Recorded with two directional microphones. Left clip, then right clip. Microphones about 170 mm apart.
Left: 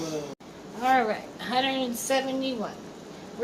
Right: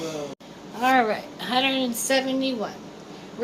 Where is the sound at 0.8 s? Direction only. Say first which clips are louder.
Right 3 dB; 40° right (ahead or behind).